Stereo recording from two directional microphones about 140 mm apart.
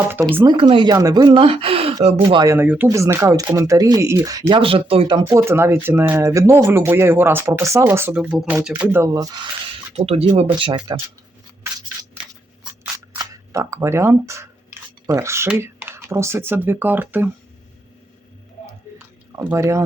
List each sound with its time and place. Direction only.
0.4 s speech: 35° right (ahead or behind)
2.3 s speech: 30° right (ahead or behind)
2.6 s speech: 15° right (ahead or behind); by 5.2 s 40° right (ahead or behind)
5.2 s speech: 15° right (ahead or behind)
9.1 s speech: 30° right (ahead or behind)
9.9 s speech: 45° right (ahead or behind)
10.6 s speech: 35° right (ahead or behind)
13.1 s speech: 20° right (ahead or behind)
18.6 s a sound: 15° right (ahead or behind)